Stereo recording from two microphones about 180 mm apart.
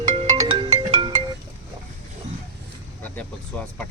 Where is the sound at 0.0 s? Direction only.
25° right (ahead or behind).